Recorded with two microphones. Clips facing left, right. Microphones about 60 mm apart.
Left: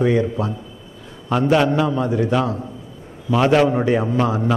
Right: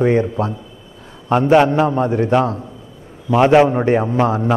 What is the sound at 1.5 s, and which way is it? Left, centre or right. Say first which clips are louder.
Speech: right 5 dB; right.